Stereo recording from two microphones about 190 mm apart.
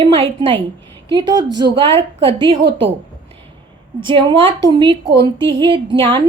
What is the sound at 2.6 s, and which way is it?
Speech, 65° right (ahead or behind).